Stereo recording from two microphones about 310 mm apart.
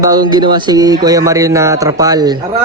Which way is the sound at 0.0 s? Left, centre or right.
Centre.